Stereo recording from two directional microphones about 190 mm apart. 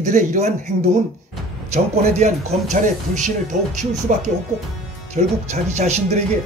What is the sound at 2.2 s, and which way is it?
Speech, 35° right (ahead or behind).